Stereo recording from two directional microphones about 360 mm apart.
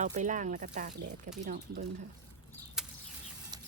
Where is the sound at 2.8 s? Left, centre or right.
Centre.